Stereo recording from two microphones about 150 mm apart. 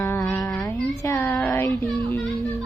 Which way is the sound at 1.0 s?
15° left (ahead or behind).